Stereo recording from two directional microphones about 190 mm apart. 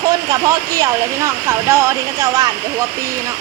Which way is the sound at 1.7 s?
15° right (ahead or behind).